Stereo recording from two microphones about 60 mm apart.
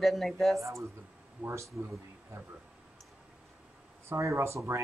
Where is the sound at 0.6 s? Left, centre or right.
Right.